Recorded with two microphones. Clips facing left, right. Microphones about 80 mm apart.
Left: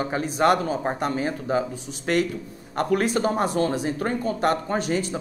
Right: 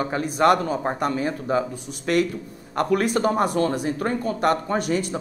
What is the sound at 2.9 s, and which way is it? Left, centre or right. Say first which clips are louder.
A man's voice: right 1 dB; right.